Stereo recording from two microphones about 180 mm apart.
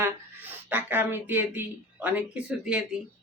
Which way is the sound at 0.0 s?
10° right (ahead or behind).